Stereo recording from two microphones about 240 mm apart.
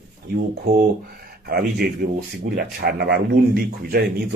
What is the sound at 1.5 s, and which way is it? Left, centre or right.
Speech, right.